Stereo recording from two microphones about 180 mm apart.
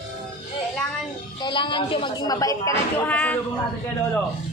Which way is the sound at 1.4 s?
25° left (ahead or behind).